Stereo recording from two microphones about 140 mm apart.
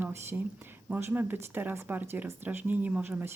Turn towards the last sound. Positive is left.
turn(degrees=-15)  # may be behind; listen again after turning